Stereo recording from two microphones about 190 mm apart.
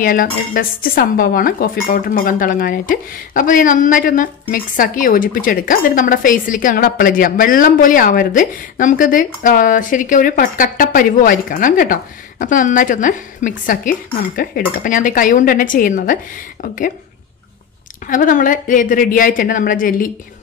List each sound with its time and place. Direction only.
0.0 s speech: 50° left (ahead or behind)
18.0 s speech: 45° left (ahead or behind)